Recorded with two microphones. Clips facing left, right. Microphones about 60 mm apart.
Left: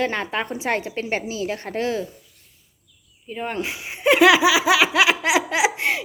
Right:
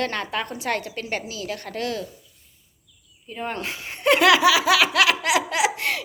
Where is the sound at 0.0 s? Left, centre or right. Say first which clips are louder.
Left 2 dB; centre.